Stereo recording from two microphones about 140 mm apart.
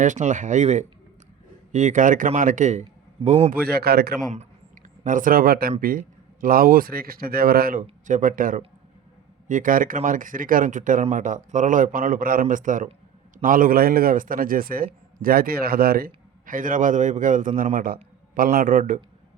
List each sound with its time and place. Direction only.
0.0 s a man's voice: 60° right (ahead or behind)
3.5 s speech: 90° right
5.0 s speech: 75° right (ahead or behind)
8.0 s a man's voice: 70° right (ahead or behind)
17.7 s speech: 90° right